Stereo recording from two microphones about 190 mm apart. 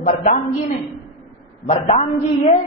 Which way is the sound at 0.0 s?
40° left (ahead or behind).